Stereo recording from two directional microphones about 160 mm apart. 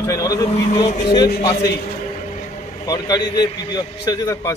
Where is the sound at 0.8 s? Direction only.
35° left (ahead or behind).